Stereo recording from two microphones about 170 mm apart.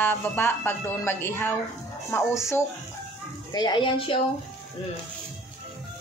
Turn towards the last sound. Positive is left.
turn(degrees=30)  # may be behind; listen again after turning